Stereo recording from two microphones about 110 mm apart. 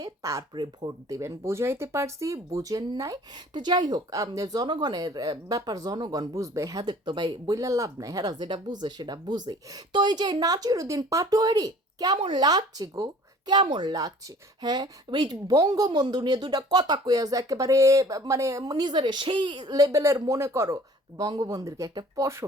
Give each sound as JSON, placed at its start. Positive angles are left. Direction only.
{"t": 0.0, "sound": "speech", "side_deg": -30}
{"t": 0.5, "sound": "speech", "side_deg": -40}